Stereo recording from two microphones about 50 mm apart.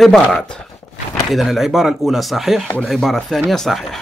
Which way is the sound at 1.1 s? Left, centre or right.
Centre.